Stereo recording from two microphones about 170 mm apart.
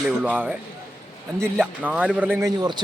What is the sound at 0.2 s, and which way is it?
Speech, 10° right (ahead or behind).